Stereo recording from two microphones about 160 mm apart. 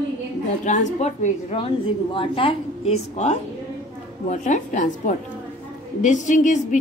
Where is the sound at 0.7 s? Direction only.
50° left (ahead or behind).